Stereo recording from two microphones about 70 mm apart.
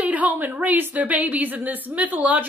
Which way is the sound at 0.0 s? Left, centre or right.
Right.